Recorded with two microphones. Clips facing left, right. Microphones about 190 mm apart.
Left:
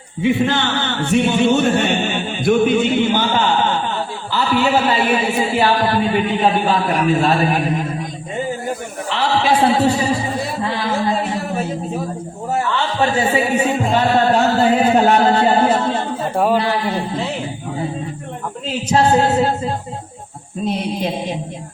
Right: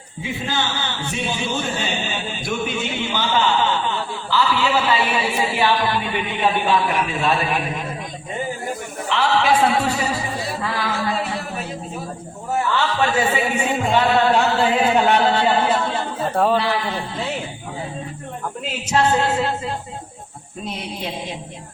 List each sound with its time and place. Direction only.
0.2 s a sound: 65° left (ahead or behind); by 7.7 s 40° left (ahead or behind)
9.0 s music: 35° left (ahead or behind)
12.8 s a man's voice: 35° left (ahead or behind)
16.3 s a man's voice: 10° left (ahead or behind)
16.6 s music: 40° left (ahead or behind)
18.9 s music: 35° left (ahead or behind)